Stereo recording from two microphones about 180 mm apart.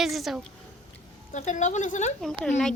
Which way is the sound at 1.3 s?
40° left (ahead or behind).